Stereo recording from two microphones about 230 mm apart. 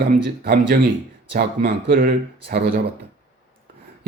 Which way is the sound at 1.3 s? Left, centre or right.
Right.